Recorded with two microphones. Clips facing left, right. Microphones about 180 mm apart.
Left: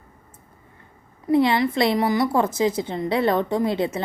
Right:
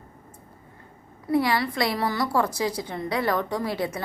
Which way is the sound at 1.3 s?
25° left (ahead or behind).